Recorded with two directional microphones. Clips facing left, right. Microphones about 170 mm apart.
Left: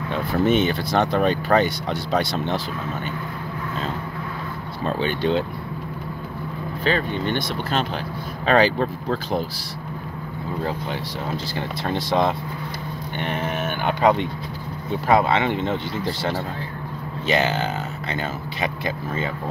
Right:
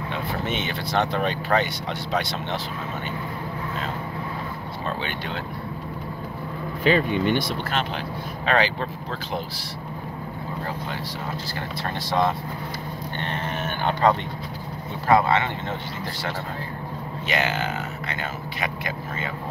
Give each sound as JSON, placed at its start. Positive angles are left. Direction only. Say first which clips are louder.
{"t": 0.5, "sound": "speech", "louder": "left 8 dB", "side_deg": 40}
{"t": 4.8, "sound": "speech", "louder": "left 8 dB", "side_deg": 35}
{"t": 6.8, "sound": "speech", "louder": "right 3 dB", "side_deg": -10}
{"t": 8.5, "sound": "speech", "louder": "left 5 dB", "side_deg": 40}
{"t": 11.5, "sound": "speech", "louder": "left 4 dB", "side_deg": 20}
{"t": 17.3, "sound": "speech", "louder": "left 4 dB", "side_deg": 30}